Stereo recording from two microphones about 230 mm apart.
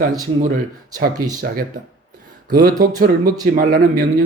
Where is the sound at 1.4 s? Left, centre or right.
Right.